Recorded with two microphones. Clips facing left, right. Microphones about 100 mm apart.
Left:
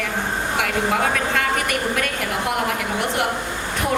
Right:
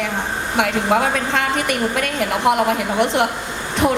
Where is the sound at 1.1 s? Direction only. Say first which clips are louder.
Right 2 dB; 25° right (ahead or behind).